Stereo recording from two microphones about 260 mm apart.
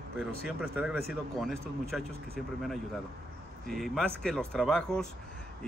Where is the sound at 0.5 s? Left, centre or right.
Centre.